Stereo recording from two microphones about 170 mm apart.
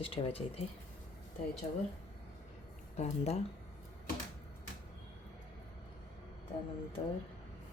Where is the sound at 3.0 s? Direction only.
40° left (ahead or behind).